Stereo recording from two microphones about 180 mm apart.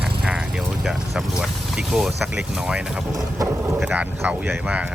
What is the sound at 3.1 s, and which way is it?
Boat, 20° right (ahead or behind).